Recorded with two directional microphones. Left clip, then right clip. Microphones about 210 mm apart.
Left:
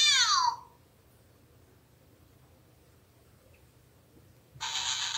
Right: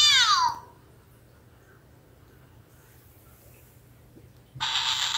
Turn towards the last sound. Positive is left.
turn(degrees=15)  # may be behind; listen again after turning